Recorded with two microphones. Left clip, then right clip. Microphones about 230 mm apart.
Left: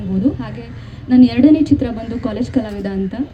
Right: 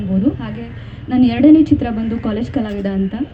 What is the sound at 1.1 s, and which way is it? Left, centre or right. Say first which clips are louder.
A woman's voice: right 1 dB; left.